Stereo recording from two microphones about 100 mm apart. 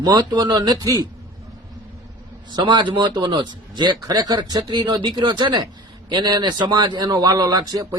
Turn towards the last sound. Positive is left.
turn(degrees=-40)  # may be behind; listen again after turning